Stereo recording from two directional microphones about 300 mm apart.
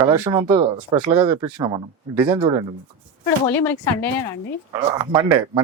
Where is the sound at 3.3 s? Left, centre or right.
Centre.